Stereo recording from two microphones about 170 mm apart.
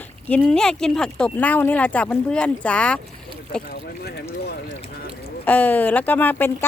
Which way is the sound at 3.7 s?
75° left (ahead or behind).